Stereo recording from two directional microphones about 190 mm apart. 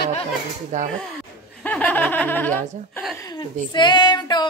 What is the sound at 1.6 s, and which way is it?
Speech, 10° left (ahead or behind).